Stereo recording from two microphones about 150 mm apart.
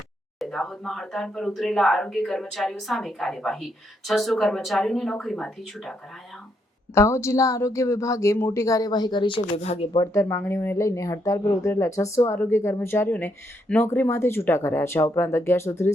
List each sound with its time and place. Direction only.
0.3 s speech: centre (ahead or behind)
6.9 s a woman's voice: 20° left (ahead or behind); by 10.0 s 45° left (ahead or behind)
10.0 s speech: 20° left (ahead or behind)